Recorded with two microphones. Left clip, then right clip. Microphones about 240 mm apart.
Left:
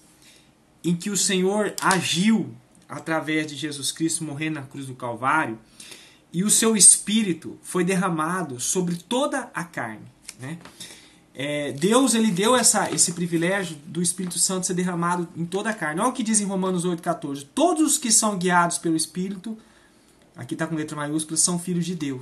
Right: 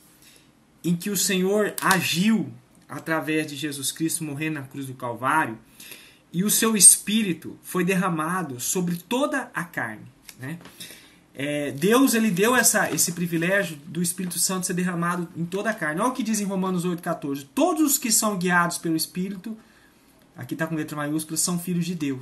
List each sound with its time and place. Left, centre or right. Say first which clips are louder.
0.8 s speech: left 1 dB; centre